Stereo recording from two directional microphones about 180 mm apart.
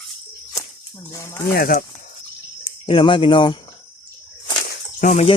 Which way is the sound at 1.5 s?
55° left (ahead or behind).